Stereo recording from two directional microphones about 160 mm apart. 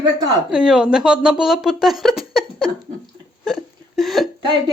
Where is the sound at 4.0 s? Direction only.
Centre (ahead or behind).